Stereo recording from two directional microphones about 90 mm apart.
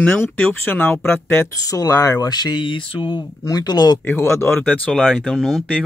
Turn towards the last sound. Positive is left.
turn(degrees=0)  # may be behind; listen again after turning